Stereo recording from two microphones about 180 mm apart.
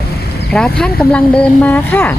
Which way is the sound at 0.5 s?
5° left (ahead or behind).